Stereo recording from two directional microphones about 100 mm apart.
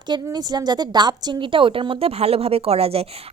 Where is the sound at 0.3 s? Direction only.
45° right (ahead or behind).